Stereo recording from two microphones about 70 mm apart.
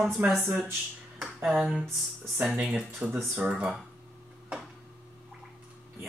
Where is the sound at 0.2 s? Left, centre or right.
Right.